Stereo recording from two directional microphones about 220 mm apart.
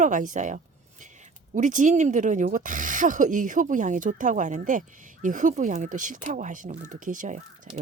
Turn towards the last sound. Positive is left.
turn(degrees=-35)  # may be behind; listen again after turning